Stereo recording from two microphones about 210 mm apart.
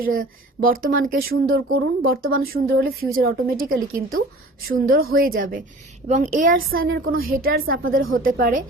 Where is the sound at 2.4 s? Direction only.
45° right (ahead or behind).